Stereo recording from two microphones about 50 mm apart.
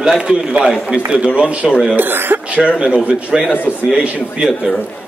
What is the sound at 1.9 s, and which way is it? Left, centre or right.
Speech, right.